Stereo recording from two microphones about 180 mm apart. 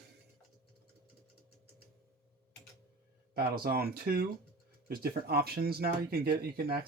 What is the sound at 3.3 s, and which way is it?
Speech, 60° right (ahead or behind).